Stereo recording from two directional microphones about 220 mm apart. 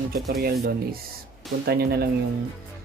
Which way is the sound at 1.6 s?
45° right (ahead or behind).